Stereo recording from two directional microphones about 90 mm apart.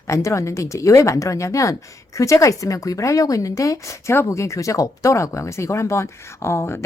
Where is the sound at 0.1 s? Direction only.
35° left (ahead or behind).